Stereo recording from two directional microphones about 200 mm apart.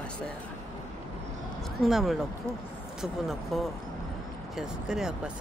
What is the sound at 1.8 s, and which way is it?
Speech, centre (ahead or behind).